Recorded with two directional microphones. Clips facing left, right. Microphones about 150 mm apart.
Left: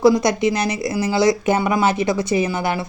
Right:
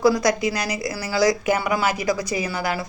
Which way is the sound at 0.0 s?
25° left (ahead or behind).